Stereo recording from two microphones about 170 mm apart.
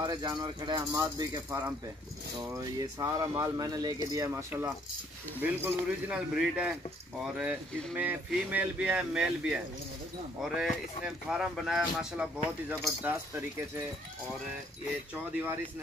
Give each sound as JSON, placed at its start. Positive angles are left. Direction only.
{"t": 0.0, "sound": "speech", "side_deg": -25}